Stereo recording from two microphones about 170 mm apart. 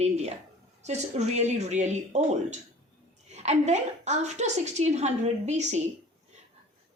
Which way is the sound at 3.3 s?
40° right (ahead or behind).